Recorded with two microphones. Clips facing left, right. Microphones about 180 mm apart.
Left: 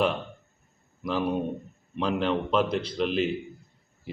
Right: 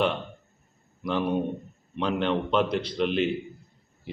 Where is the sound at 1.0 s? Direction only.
5° left (ahead or behind).